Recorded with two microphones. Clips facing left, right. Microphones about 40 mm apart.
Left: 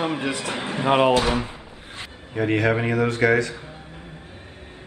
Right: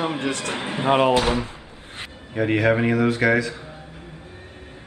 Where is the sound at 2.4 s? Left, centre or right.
Centre.